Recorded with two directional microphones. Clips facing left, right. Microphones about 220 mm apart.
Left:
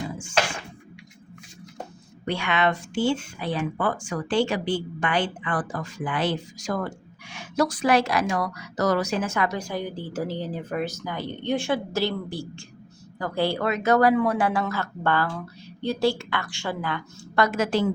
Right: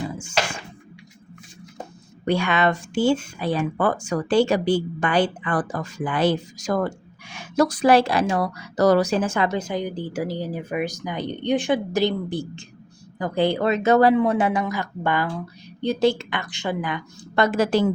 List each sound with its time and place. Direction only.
2.2 s speech: 40° right (ahead or behind)